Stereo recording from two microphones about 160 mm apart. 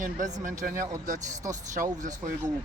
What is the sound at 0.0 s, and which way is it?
Speech, 50° right (ahead or behind).